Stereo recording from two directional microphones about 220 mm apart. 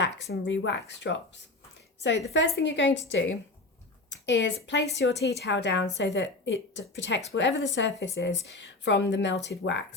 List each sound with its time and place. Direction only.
0.0 s a woman's voice: 50° left (ahead or behind)